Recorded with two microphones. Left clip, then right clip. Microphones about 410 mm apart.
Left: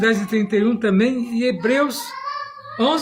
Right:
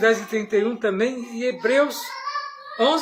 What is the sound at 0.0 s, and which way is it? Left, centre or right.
Speech, left.